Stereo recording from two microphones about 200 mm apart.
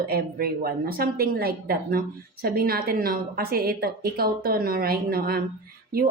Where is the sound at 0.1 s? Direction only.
50° right (ahead or behind).